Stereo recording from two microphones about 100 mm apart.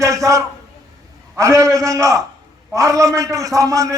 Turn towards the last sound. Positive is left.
turn(degrees=-35)  # may be behind; listen again after turning